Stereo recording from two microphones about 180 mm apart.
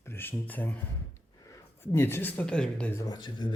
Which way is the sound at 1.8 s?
10° left (ahead or behind).